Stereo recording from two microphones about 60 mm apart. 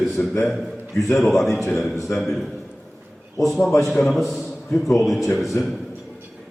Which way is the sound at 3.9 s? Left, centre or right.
Centre.